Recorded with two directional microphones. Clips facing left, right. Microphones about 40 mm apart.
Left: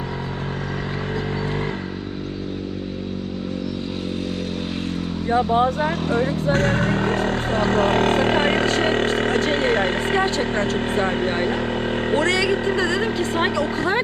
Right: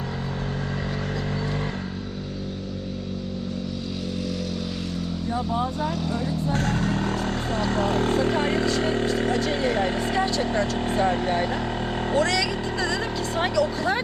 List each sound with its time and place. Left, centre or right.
5.3 s speech: left